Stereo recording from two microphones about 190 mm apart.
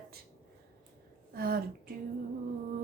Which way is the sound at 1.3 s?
50° right (ahead or behind).